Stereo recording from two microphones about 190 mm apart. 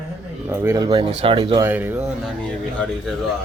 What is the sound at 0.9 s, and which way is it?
Speech, 30° right (ahead or behind).